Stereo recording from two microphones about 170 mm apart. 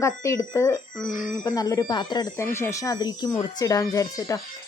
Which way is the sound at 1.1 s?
50° left (ahead or behind).